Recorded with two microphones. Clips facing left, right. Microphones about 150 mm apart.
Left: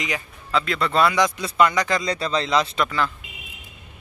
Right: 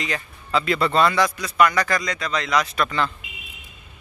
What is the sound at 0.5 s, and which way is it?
Speech, 5° right (ahead or behind).